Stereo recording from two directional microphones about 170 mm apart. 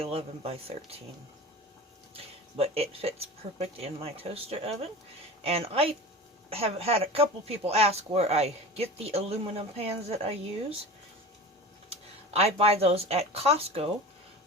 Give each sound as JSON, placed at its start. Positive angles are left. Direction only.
{"t": 0.0, "sound": "speech", "side_deg": -35}
{"t": 2.1, "sound": "speech", "side_deg": -35}
{"t": 11.9, "sound": "speech", "side_deg": -35}